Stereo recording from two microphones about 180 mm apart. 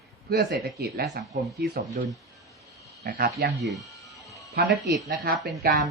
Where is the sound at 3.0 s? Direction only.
60° right (ahead or behind).